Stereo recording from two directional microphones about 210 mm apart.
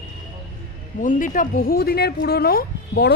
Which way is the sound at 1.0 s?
40° left (ahead or behind).